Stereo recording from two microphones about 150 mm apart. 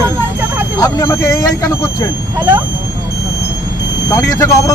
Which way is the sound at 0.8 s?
25° left (ahead or behind).